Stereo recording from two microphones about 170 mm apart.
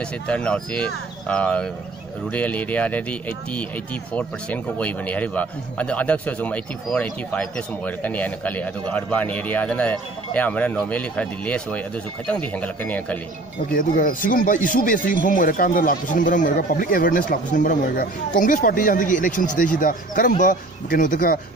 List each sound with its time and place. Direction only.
0.0 s speech: 5° left (ahead or behind)
13.7 s speech: 55° left (ahead or behind)